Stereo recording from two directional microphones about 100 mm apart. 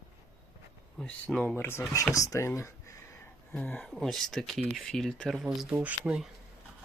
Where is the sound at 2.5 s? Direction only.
30° left (ahead or behind); by 3.9 s 15° left (ahead or behind).